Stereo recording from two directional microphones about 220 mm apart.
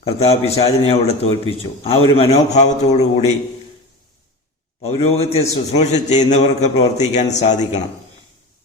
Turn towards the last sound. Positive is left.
turn(degrees=30)  # may be behind; listen again after turning